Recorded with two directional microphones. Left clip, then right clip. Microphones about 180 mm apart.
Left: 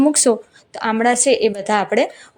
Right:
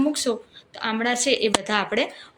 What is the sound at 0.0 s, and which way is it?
Speech, 45° left (ahead or behind).